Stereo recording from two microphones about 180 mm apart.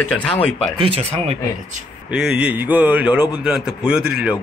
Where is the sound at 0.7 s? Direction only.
30° right (ahead or behind).